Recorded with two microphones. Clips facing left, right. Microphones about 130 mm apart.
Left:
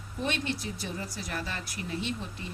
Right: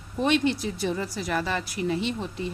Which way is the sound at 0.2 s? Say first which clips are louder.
Right 9 dB; 90° right.